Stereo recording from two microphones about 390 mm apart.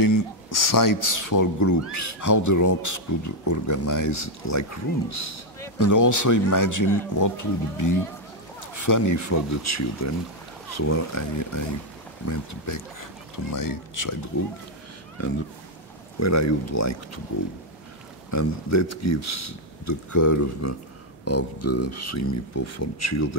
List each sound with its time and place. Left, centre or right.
0.0 s speech: left
15.2 s speech: left
18.3 s speech: left
21.2 s speech: left